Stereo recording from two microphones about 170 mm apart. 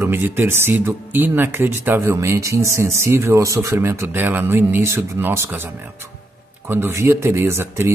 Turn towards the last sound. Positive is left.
turn(degrees=-15)  # may be behind; listen again after turning